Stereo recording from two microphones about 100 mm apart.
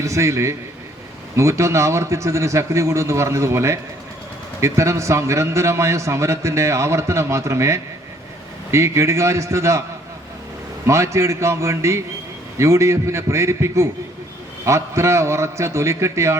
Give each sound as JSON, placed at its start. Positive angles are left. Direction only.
{"t": 0.0, "sound": "a man's voice", "side_deg": -30}
{"t": 10.8, "sound": "a man's voice", "side_deg": -30}